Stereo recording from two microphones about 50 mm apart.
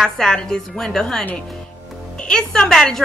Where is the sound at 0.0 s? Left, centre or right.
Centre.